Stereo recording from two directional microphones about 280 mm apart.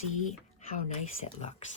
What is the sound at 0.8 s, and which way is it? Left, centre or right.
Speech, left.